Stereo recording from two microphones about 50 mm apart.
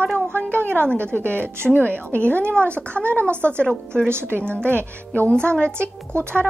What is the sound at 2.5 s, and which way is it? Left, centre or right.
A child's voice, left.